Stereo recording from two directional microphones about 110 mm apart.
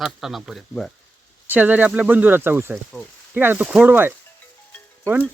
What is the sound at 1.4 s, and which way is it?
Speech, 15° right (ahead or behind).